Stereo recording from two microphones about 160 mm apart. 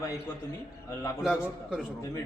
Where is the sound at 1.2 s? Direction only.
5° right (ahead or behind).